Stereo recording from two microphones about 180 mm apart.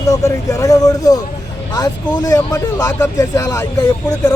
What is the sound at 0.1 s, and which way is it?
Speech, 15° left (ahead or behind).